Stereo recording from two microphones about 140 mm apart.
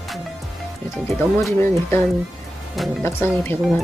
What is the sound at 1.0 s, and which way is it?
Speech, 20° left (ahead or behind).